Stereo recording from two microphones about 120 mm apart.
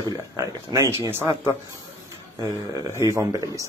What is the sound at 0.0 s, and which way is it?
Speech, 30° right (ahead or behind).